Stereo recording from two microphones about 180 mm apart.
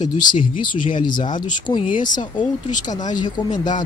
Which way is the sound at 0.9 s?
25° left (ahead or behind).